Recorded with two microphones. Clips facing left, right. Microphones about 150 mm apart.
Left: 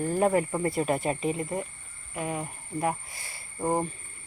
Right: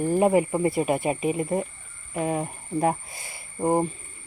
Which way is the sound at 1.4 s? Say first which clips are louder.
Right 6 dB; 20° right (ahead or behind).